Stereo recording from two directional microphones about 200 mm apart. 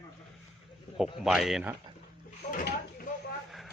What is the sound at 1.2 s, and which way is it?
Speech, centre (ahead or behind).